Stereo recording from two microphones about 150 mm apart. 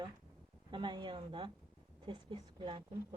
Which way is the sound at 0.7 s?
30° right (ahead or behind).